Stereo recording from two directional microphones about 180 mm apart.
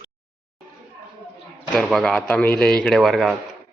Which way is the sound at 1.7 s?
Centre (ahead or behind).